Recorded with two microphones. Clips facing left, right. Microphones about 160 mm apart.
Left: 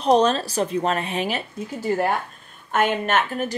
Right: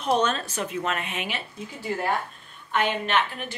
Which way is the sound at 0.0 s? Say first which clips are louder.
Left 6 dB; 35° left (ahead or behind).